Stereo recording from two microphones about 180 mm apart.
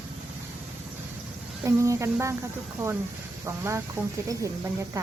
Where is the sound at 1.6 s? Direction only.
15° right (ahead or behind).